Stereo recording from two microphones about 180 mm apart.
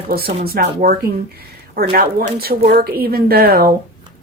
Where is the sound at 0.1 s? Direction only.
55° right (ahead or behind).